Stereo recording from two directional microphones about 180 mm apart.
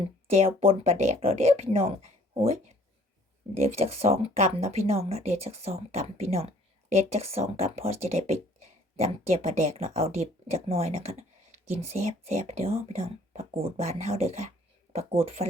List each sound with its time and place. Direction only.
0.0 s speech: 35° right (ahead or behind)